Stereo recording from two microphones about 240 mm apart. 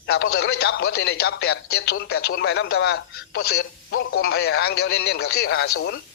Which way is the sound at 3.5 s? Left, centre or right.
Left.